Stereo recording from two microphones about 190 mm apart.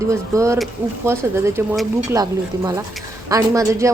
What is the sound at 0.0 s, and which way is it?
Speech, 15° right (ahead or behind).